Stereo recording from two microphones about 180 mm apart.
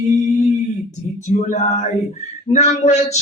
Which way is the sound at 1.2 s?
40° left (ahead or behind).